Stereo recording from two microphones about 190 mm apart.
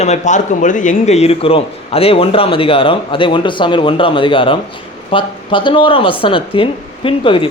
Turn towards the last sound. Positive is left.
turn(degrees=25)  # may be behind; listen again after turning